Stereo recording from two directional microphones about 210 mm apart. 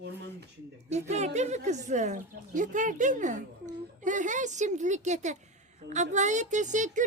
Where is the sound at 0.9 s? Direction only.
30° right (ahead or behind).